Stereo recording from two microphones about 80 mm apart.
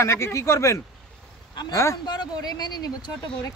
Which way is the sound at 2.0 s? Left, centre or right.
Left.